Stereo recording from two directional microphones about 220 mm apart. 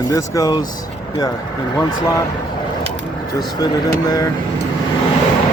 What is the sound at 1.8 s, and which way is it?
Speech, 15° left (ahead or behind).